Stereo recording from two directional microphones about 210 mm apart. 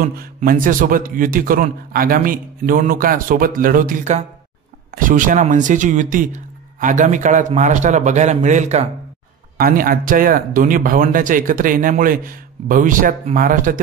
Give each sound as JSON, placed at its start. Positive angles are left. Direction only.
{"t": 0.2, "sound": "speech", "side_deg": -40}